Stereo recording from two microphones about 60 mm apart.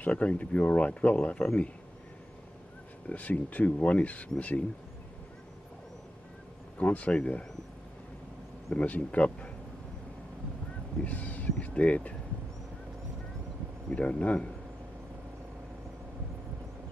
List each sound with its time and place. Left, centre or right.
0.0 s speech: left
3.1 s speech: left
6.8 s speech: left
8.7 s speech: left
11.1 s speech: left
13.8 s speech: centre